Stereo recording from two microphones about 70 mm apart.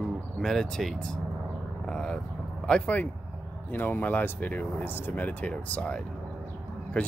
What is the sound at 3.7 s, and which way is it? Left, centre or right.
Speech, left.